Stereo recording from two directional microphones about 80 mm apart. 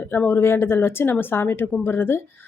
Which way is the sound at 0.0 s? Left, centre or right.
Left.